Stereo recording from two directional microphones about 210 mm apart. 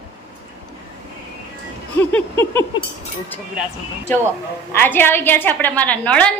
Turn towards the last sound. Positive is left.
turn(degrees=5)  # may be behind; listen again after turning